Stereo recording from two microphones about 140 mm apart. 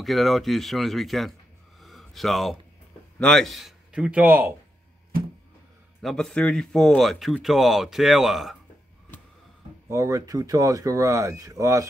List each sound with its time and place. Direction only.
0.0 s speech: centre (ahead or behind)
1.8 s a sound: centre (ahead or behind)
3.2 s a man's voice: 5° left (ahead or behind); by 4.6 s 15° right (ahead or behind)
6.0 s speech: 5° left (ahead or behind)
9.8 s speech: 20° right (ahead or behind)